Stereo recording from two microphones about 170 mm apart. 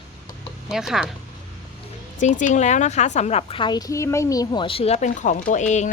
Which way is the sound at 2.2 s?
45° left (ahead or behind).